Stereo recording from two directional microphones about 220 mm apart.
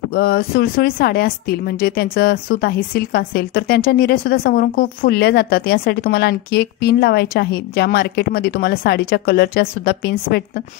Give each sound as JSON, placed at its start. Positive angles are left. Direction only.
{"t": 0.1, "sound": "speech", "side_deg": 45}